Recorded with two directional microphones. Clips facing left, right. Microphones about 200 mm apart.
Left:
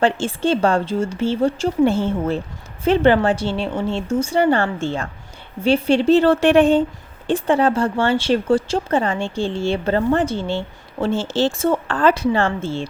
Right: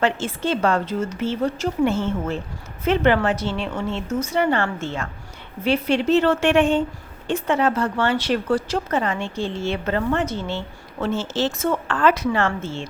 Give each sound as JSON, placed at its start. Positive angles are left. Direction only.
{"t": 0.0, "sound": "speech", "side_deg": 30}